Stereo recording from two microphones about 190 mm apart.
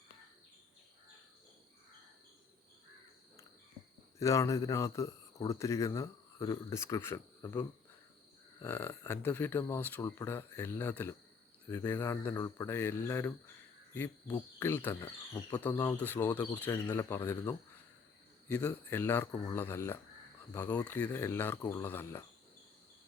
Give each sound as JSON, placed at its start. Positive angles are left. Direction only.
{"t": 4.2, "sound": "speech", "side_deg": 15}